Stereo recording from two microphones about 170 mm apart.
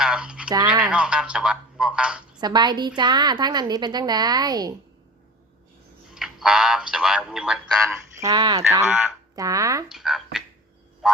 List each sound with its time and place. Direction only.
0.0 s a sound: 5° right (ahead or behind)
0.9 s speech: 5° right (ahead or behind)
2.4 s a woman's voice: 25° right (ahead or behind)
6.1 s speech: 5° right (ahead or behind)
8.1 s a woman's voice: 20° right (ahead or behind)
8.9 s speech: 5° right (ahead or behind)
9.3 s a woman's voice: 20° right (ahead or behind)
9.9 s speech: centre (ahead or behind)
11.0 s music: centre (ahead or behind)